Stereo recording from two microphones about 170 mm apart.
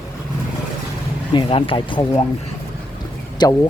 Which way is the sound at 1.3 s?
30° left (ahead or behind).